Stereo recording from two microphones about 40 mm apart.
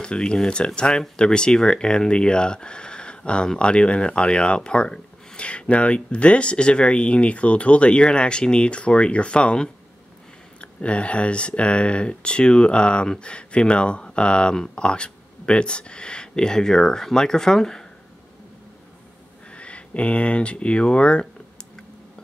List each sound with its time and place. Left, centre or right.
0.0 s speech: left
19.5 s speech: left